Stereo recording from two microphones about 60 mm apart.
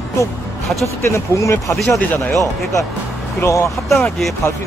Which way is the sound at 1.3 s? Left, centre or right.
Left.